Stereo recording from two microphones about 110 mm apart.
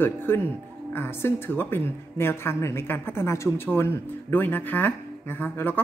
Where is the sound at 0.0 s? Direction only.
20° left (ahead or behind).